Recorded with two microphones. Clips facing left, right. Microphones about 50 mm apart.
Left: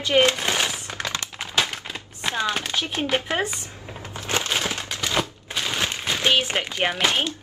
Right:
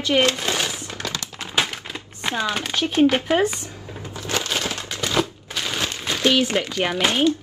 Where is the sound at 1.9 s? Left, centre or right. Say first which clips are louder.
Right 1 dB; centre.